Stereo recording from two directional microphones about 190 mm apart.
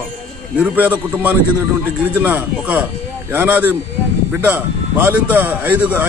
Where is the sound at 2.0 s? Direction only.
10° right (ahead or behind).